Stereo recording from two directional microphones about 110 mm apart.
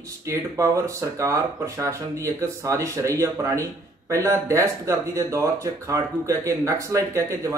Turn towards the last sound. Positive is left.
turn(degrees=-25)  # may be behind; listen again after turning